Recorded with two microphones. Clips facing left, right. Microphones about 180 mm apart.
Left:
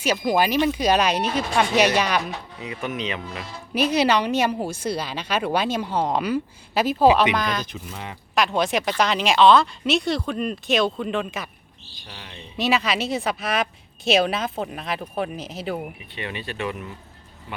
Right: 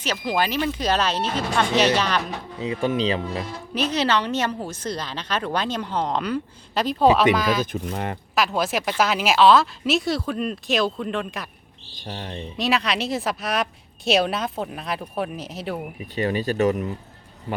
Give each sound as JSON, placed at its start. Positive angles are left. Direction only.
{"t": 0.0, "sound": "a woman's voice", "side_deg": 10}
{"t": 2.6, "sound": "speech", "side_deg": -30}
{"t": 3.8, "sound": "a woman's voice", "side_deg": 10}
{"t": 7.6, "sound": "speech", "side_deg": -50}
{"t": 8.4, "sound": "a woman's voice", "side_deg": 0}
{"t": 12.0, "sound": "speech", "side_deg": -45}
{"t": 12.5, "sound": "a woman's voice", "side_deg": 0}
{"t": 16.0, "sound": "speech", "side_deg": -40}